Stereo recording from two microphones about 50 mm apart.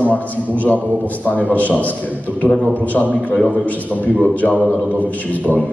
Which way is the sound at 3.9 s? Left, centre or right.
Centre.